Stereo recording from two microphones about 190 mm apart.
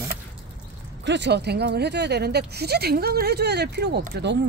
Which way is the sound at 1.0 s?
65° right (ahead or behind).